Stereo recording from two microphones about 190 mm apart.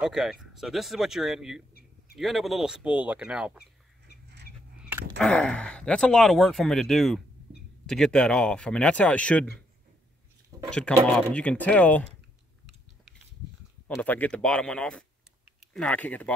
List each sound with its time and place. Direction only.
0.0 s speech: 5° right (ahead or behind)
1.7 s a sound: 55° left (ahead or behind)
2.1 s speech: centre (ahead or behind)
5.2 s speech: 5° left (ahead or behind)
10.7 s speech: 5° left (ahead or behind)
13.8 s speech: 10° left (ahead or behind)